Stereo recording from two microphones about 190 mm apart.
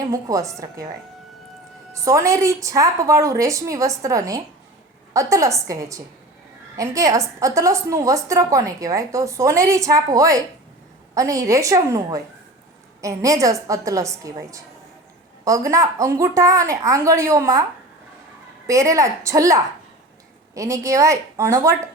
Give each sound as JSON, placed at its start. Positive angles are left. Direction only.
{"t": 0.1, "sound": "a woman's voice", "side_deg": -15}
{"t": 1.9, "sound": "a woman's voice", "side_deg": -15}
{"t": 18.7, "sound": "a woman's voice", "side_deg": -15}